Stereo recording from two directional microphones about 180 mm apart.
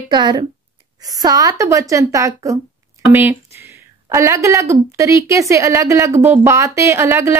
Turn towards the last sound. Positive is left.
turn(degrees=-15)  # may be behind; listen again after turning